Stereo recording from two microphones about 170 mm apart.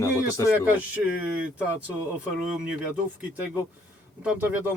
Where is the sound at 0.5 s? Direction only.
10° right (ahead or behind).